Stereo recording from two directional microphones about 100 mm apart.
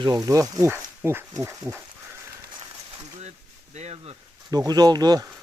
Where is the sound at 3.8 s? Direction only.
90° right.